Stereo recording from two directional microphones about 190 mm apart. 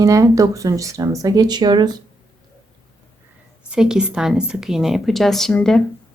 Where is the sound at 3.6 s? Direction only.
5° right (ahead or behind).